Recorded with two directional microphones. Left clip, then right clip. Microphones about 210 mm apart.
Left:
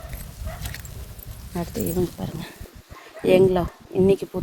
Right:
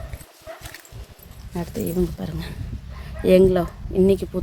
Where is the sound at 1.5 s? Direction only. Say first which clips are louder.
Even; 10° right (ahead or behind).